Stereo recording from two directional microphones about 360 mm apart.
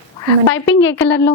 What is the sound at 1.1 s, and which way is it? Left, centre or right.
Speech, left.